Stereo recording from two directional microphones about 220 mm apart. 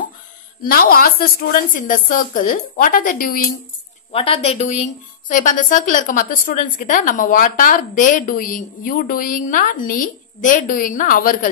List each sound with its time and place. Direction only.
0.6 s a woman's voice: 40° left (ahead or behind)
4.1 s a woman's voice: 25° left (ahead or behind)